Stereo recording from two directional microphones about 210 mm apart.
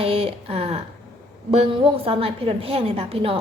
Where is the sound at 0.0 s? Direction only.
25° right (ahead or behind).